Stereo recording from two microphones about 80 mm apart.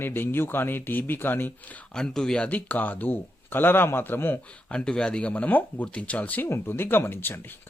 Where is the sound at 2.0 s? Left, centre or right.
Centre; by 4.4 s left.